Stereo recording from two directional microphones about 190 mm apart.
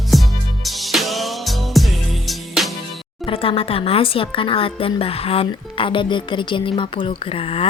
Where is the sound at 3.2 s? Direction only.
30° left (ahead or behind).